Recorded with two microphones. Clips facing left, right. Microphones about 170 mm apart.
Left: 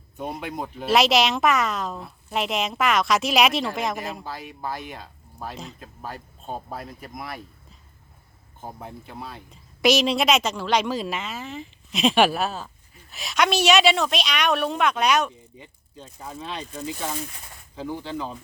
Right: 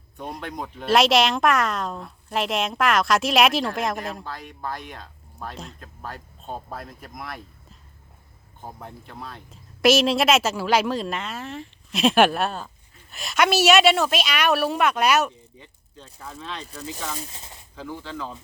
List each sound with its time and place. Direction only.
0.2 s speech: 5° left (ahead or behind)
15.5 s speech: 15° left (ahead or behind)
17.2 s speech: 25° right (ahead or behind)
17.7 s speech: 15° left (ahead or behind)